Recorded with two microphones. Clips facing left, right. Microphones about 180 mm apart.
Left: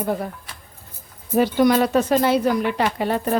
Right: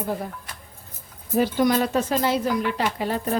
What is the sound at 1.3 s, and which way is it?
A woman's voice, 65° left (ahead or behind).